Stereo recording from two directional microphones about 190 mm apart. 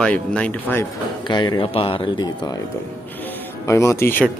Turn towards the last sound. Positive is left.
turn(degrees=10)  # may be behind; listen again after turning